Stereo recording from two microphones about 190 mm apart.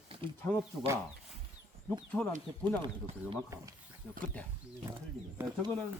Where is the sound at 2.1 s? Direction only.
Centre (ahead or behind).